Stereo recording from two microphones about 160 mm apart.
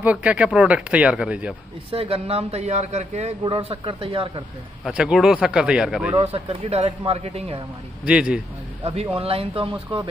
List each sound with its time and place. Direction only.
0.0 s speech: 10° right (ahead or behind)
1.9 s a man's voice: 35° right (ahead or behind)
3.4 s a man's voice: 35° right (ahead or behind)
4.8 s speech: 5° right (ahead or behind)
6.2 s a man's voice: 40° right (ahead or behind)
8.0 s speech: 5° right (ahead or behind)
8.8 s a man's voice: 40° right (ahead or behind)